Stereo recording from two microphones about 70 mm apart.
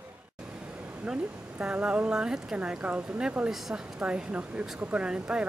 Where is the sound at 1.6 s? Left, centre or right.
Centre.